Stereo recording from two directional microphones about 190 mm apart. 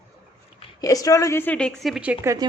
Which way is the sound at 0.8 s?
15° left (ahead or behind).